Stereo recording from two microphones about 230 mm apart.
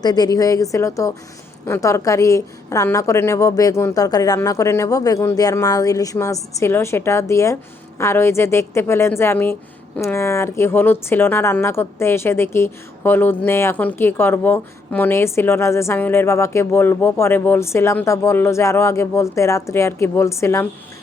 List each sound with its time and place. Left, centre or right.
0.0 s speech: centre